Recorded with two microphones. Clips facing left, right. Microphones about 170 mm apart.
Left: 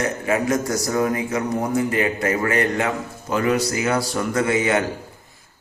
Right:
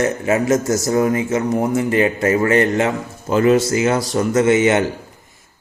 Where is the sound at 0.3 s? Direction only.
25° right (ahead or behind).